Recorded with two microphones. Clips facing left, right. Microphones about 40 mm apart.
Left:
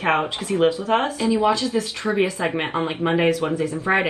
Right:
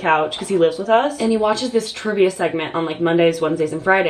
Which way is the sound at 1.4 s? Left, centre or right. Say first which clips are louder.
Right 2 dB; right.